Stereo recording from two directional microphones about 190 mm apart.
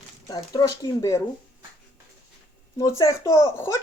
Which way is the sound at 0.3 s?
20° left (ahead or behind).